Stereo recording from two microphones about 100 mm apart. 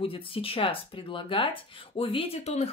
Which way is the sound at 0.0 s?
65° left (ahead or behind).